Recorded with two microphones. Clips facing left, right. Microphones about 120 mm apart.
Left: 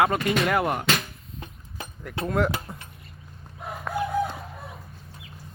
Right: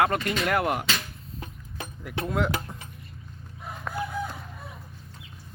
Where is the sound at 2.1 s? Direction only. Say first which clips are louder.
Left 2 dB; centre (ahead or behind).